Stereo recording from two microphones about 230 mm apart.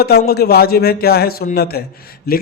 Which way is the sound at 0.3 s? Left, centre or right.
Left.